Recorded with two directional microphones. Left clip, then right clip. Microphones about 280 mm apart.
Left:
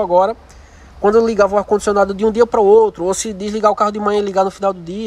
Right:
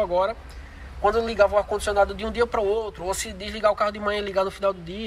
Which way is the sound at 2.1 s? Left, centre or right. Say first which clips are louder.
Left 11 dB; left.